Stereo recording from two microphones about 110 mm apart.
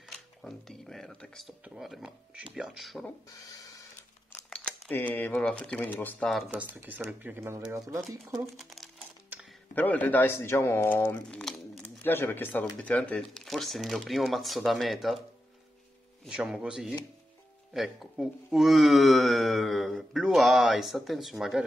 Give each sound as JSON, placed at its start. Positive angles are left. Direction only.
{"t": 0.4, "sound": "speech", "side_deg": 0}
{"t": 3.3, "sound": "a sound", "side_deg": 35}
{"t": 4.5, "sound": "typewriter", "side_deg": 10}
{"t": 5.4, "sound": "speech", "side_deg": 10}
{"t": 6.5, "sound": "speech", "side_deg": -15}
{"t": 8.5, "sound": "crumpling", "side_deg": 0}
{"t": 9.8, "sound": "a man's voice", "side_deg": 15}
{"t": 11.2, "sound": "a sound", "side_deg": 5}
{"t": 11.8, "sound": "speech", "side_deg": 20}
{"t": 16.3, "sound": "speech", "side_deg": -5}